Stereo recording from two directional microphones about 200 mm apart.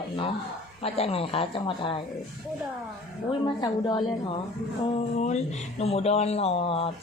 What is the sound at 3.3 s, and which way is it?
Speech, 20° left (ahead or behind).